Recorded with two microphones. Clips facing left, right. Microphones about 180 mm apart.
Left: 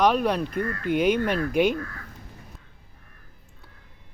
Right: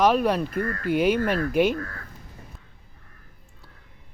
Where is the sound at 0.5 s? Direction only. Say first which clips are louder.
Right 1 dB; 45° right (ahead or behind).